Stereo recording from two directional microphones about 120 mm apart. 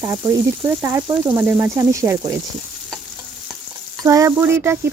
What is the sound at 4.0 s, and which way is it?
Speech, 25° right (ahead or behind).